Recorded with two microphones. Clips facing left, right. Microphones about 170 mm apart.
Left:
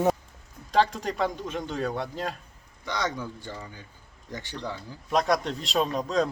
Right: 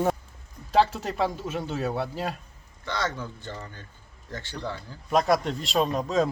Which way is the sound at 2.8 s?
15° left (ahead or behind).